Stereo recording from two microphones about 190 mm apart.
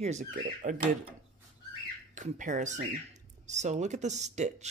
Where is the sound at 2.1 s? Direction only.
40° right (ahead or behind).